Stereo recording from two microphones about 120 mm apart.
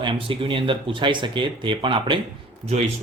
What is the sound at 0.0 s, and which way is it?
Speech, 45° right (ahead or behind).